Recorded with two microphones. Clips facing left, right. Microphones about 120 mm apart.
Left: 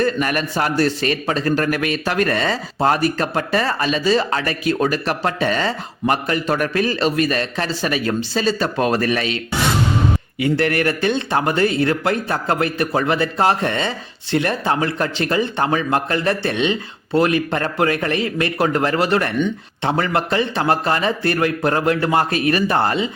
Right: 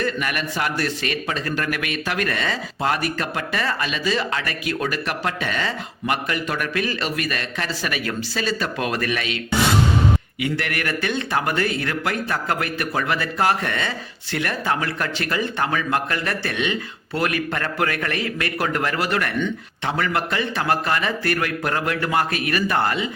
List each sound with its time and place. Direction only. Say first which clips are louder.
0.0 s a man's voice: left 5 dB; 40° left (ahead or behind)
10.4 s speech: left 9 dB; 35° left (ahead or behind)